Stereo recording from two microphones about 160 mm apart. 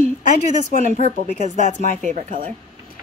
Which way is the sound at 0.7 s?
50° left (ahead or behind).